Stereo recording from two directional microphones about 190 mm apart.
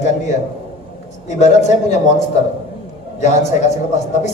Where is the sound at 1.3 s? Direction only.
40° left (ahead or behind).